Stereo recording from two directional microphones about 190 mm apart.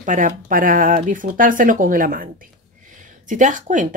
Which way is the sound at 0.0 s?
45° right (ahead or behind).